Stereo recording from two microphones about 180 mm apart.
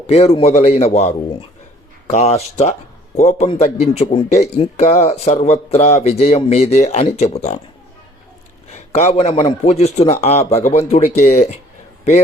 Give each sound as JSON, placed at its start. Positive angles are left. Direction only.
{"t": 0.1, "sound": "a man's voice", "side_deg": 35}
{"t": 8.7, "sound": "a man's voice", "side_deg": 35}